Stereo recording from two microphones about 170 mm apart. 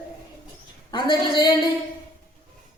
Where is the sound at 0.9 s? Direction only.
25° left (ahead or behind).